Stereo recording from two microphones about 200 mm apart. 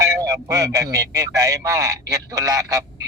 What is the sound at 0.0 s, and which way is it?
Speech, 15° right (ahead or behind).